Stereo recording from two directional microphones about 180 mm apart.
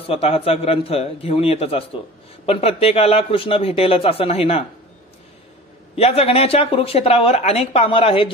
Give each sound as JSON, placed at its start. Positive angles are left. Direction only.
{"t": 0.0, "sound": "speech", "side_deg": 35}
{"t": 5.9, "sound": "speech", "side_deg": 35}